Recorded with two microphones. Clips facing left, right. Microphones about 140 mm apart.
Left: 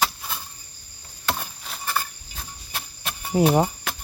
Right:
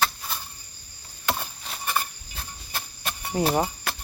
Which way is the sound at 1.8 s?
15° right (ahead or behind).